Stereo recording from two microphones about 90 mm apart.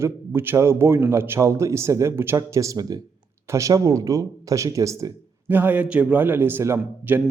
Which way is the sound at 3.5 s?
35° right (ahead or behind).